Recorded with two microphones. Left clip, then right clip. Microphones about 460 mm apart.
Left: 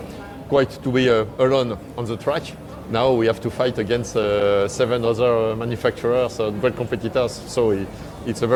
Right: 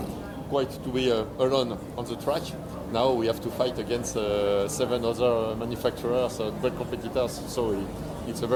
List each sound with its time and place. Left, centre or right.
0.5 s speech: left